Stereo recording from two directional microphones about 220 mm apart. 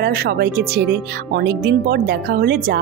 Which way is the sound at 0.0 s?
45° right (ahead or behind).